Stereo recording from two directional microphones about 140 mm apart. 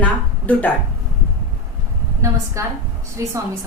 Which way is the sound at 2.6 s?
20° right (ahead or behind).